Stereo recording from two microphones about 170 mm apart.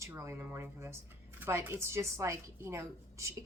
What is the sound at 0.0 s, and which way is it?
A woman's voice, 15° right (ahead or behind).